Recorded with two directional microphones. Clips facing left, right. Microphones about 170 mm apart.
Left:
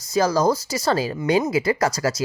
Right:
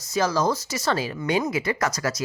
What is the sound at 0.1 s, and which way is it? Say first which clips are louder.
Speech: left 4 dB; 35° left (ahead or behind).